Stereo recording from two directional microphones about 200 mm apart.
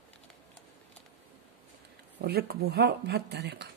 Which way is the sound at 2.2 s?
50° right (ahead or behind).